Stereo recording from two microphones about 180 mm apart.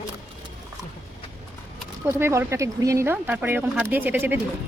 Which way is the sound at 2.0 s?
15° right (ahead or behind).